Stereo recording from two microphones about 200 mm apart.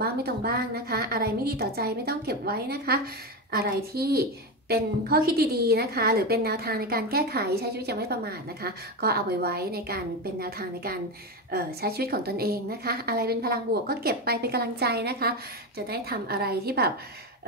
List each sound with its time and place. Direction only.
0.0 s a woman's voice: 50° right (ahead or behind)